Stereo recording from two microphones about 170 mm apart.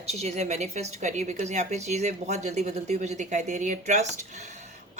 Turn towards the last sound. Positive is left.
turn(degrees=-45)  # may be behind; listen again after turning